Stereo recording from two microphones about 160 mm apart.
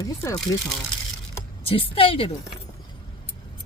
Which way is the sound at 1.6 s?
35° left (ahead or behind).